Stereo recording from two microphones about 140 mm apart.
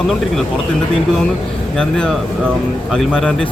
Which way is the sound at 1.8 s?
5° left (ahead or behind).